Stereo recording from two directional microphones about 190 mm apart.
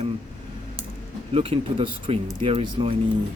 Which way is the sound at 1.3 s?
30° right (ahead or behind).